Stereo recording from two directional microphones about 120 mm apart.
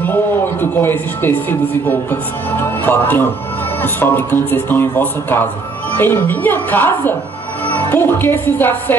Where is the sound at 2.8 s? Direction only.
15° left (ahead or behind).